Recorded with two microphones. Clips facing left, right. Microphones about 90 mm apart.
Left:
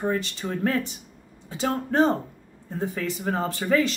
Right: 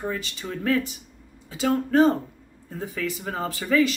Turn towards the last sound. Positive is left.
turn(degrees=35)  # may be behind; listen again after turning